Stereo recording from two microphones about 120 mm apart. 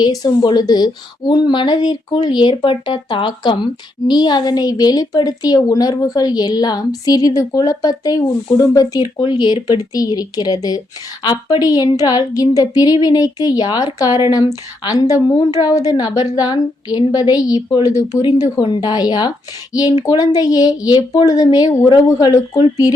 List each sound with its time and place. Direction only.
0.0 s a woman's voice: 35° left (ahead or behind)
21.8 s a woman's voice: 40° left (ahead or behind)